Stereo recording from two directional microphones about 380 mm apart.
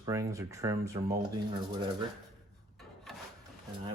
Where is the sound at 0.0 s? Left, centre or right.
Centre.